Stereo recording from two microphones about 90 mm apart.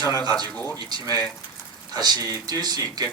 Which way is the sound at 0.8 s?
50° right (ahead or behind).